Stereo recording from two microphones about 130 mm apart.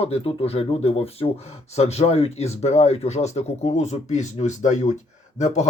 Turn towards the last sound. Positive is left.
turn(degrees=60)  # may be behind; listen again after turning